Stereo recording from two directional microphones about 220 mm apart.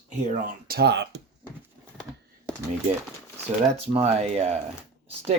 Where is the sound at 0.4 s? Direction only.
45° right (ahead or behind).